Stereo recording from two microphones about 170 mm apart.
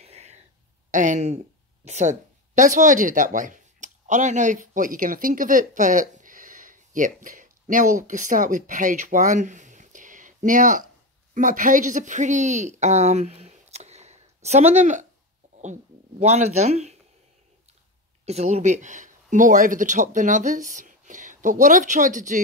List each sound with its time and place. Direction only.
0.0 s a sound: 40° right (ahead or behind)
0.9 s speech: 50° right (ahead or behind)
18.2 s speech: 40° right (ahead or behind)